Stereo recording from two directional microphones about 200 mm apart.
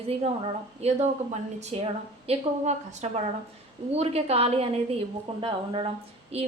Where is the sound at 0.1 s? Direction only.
30° right (ahead or behind).